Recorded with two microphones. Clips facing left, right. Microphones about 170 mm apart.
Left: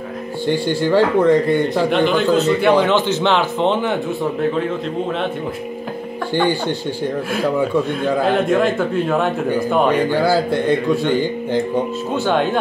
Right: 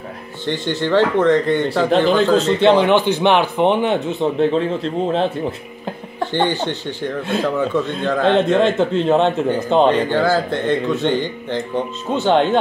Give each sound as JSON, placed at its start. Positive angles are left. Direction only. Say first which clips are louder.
{"t": 0.5, "sound": "a man's voice", "louder": "left 2 dB", "side_deg": 10}
{"t": 1.9, "sound": "a man's voice", "louder": "right 4 dB", "side_deg": -35}
{"t": 2.8, "sound": "speech", "louder": "right 1 dB", "side_deg": -15}
{"t": 7.4, "sound": "a man's voice", "louder": "left 3 dB", "side_deg": 10}
{"t": 8.4, "sound": "a man's voice", "louder": "right 1 dB", "side_deg": -25}
{"t": 9.9, "sound": "a man's voice", "louder": "left 1 dB", "side_deg": 10}
{"t": 12.1, "sound": "a man's voice", "louder": "right 4 dB", "side_deg": -20}